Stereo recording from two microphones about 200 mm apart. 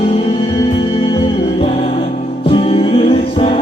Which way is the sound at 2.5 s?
25° left (ahead or behind).